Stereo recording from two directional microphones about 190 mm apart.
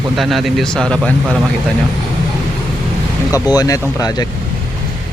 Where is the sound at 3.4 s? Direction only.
20° left (ahead or behind).